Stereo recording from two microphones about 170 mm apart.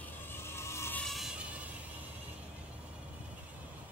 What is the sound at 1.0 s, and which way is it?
Music, centre (ahead or behind).